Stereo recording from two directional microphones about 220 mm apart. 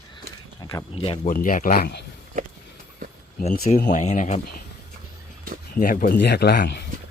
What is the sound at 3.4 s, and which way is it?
Speech, 35° left (ahead or behind).